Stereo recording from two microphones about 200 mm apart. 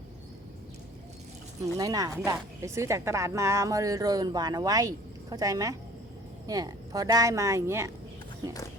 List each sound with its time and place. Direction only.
1.6 s speech: 15° right (ahead or behind)